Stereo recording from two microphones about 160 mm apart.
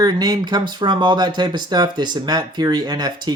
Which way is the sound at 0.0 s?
25° right (ahead or behind).